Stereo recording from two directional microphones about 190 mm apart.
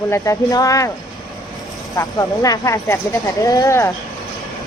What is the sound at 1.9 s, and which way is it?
Speech, 20° left (ahead or behind).